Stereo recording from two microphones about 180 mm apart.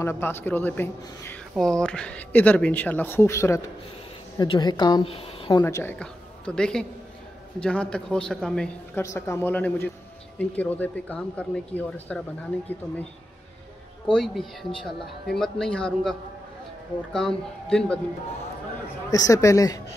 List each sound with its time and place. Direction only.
0.0 s a woman's voice: 15° left (ahead or behind); by 5.5 s 30° left (ahead or behind)
5.6 s a woman's voice: 10° left (ahead or behind)
9.0 s speech: 15° left (ahead or behind)
14.1 s speech: centre (ahead or behind)
19.0 s a woman's voice: 20° left (ahead or behind)